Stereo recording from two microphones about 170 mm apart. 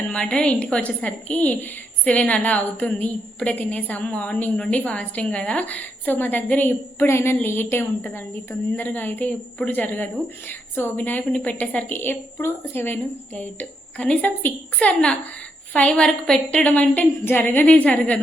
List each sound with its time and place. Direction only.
0.1 s a woman's voice: 5° left (ahead or behind)